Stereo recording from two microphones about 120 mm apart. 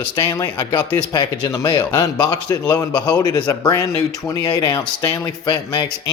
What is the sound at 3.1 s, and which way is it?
Speech, 35° left (ahead or behind).